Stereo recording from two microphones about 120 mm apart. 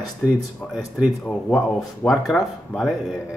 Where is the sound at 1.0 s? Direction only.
Centre (ahead or behind).